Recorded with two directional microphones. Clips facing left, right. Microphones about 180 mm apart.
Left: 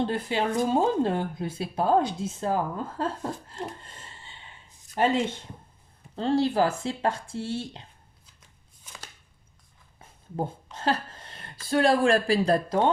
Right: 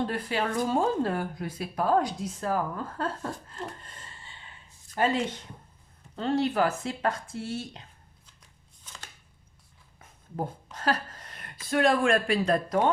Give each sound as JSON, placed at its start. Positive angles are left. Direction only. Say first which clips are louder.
{"t": 0.0, "sound": "speech", "louder": "left 2 dB", "side_deg": 25}
{"t": 8.4, "sound": "shuffling cards", "louder": "even", "side_deg": 10}
{"t": 10.0, "sound": "a sound", "louder": "left 2 dB", "side_deg": 25}
{"t": 11.7, "sound": "speech", "louder": "left 2 dB", "side_deg": 30}